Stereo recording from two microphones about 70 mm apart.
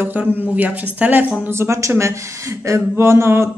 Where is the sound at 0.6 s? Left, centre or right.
Right.